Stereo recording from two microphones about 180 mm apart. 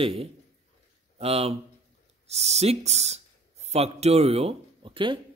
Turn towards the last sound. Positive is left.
turn(degrees=-30)  # may be behind; listen again after turning